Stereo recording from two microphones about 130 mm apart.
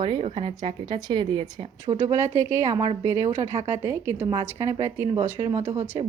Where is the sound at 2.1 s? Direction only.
20° right (ahead or behind).